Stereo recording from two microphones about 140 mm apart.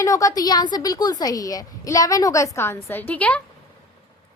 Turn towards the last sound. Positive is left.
turn(degrees=10)  # may be behind; listen again after turning